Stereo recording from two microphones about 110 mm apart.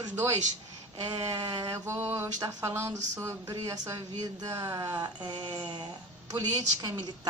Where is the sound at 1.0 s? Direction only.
40° right (ahead or behind).